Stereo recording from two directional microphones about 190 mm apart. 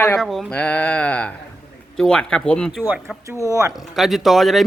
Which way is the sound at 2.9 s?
10° right (ahead or behind).